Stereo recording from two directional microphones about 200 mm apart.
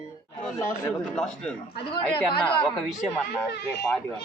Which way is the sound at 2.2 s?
5° left (ahead or behind).